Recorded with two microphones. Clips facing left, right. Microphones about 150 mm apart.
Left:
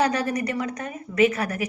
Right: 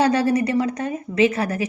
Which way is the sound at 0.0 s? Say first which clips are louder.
Right 5 dB; 30° right (ahead or behind).